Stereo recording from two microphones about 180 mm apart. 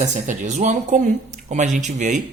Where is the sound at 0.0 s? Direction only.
40° right (ahead or behind).